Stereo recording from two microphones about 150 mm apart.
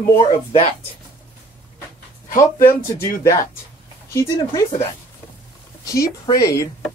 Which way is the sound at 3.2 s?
20° left (ahead or behind).